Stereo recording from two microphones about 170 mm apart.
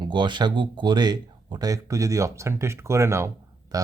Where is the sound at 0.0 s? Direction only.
25° right (ahead or behind).